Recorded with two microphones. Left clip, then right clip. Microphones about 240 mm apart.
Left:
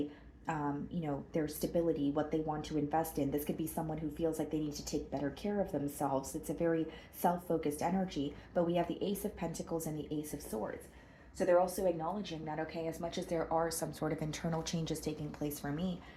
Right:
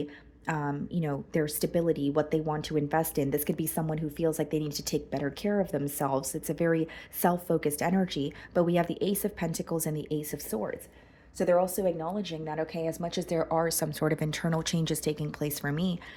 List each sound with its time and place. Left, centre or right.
0.4 s a woman's voice: right